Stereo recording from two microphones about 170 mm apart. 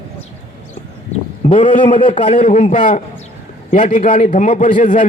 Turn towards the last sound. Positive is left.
turn(degrees=50)  # may be behind; listen again after turning